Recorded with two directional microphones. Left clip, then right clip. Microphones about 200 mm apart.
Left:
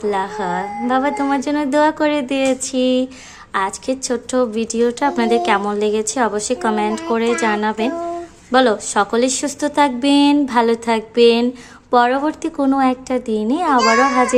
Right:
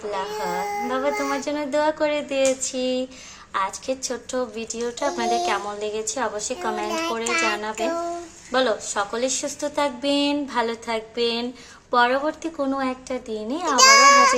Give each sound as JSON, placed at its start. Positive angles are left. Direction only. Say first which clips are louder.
{"t": 0.1, "sound": "a woman's voice", "louder": "left 4 dB", "side_deg": 40}